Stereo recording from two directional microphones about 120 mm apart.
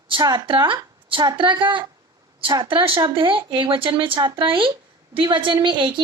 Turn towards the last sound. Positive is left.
turn(degrees=-40)  # may be behind; listen again after turning